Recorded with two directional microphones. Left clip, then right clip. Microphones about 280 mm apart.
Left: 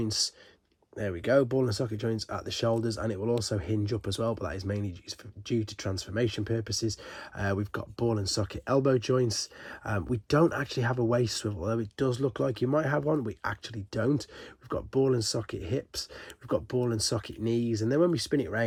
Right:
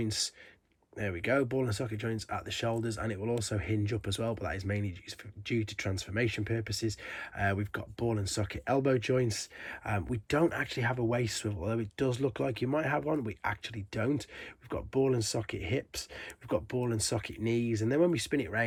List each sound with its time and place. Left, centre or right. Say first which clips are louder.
0.0 s speech: left 4 dB; centre
3.2 s speech: left 5 dB; left
3.4 s speech: left 3 dB; centre